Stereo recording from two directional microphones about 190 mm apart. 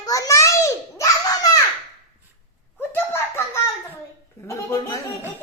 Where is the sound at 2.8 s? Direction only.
10° left (ahead or behind).